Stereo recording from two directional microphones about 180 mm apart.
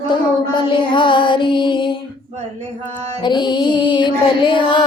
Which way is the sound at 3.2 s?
25° left (ahead or behind).